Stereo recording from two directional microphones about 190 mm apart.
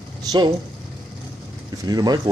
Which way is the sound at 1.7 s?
20° right (ahead or behind).